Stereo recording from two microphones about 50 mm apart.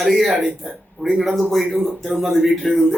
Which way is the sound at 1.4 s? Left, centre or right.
Centre.